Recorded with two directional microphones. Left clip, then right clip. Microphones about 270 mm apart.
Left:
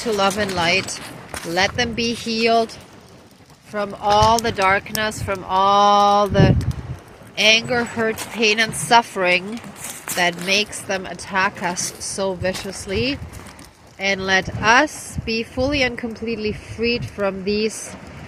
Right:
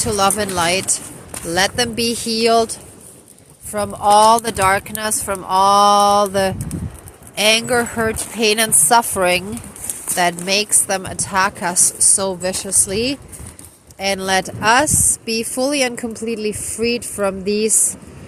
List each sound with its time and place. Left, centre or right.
0.0 s speech: centre
3.7 s speech: centre
7.3 s speech: right